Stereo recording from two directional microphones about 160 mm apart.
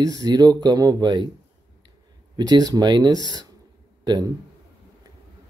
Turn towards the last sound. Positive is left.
turn(degrees=-25)  # may be behind; listen again after turning